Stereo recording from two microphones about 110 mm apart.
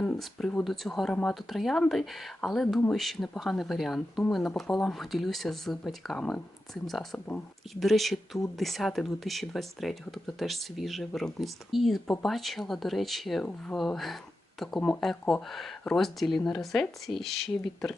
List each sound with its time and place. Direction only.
0.2 s speech: centre (ahead or behind)